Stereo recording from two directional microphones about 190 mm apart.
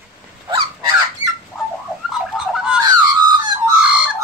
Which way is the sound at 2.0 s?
5° right (ahead or behind).